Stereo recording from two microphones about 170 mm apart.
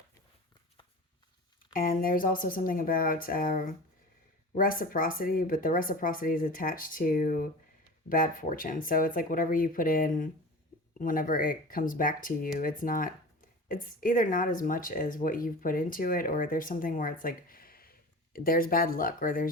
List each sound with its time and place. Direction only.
1.7 s speech: 55° left (ahead or behind)